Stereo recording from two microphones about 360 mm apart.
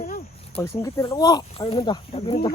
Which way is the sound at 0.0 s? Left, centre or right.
Left.